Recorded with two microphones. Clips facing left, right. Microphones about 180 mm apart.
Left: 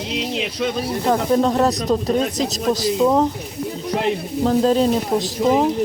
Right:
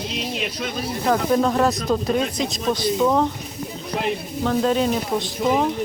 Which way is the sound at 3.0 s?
20° left (ahead or behind).